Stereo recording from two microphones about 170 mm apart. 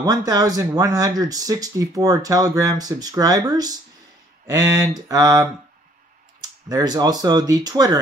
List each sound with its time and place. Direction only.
0.0 s speech: 20° right (ahead or behind)